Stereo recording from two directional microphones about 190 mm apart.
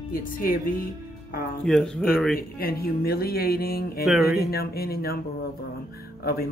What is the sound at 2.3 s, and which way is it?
Speech, 50° left (ahead or behind).